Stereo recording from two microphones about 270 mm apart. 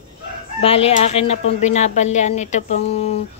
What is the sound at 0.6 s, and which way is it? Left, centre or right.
Speech, left.